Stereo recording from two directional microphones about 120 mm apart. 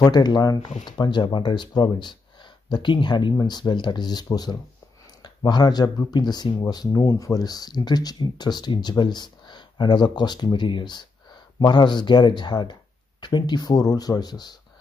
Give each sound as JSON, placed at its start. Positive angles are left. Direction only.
{"t": 0.0, "sound": "speech", "side_deg": 35}